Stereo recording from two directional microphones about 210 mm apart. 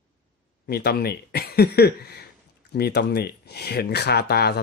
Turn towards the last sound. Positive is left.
turn(degrees=50)  # may be behind; listen again after turning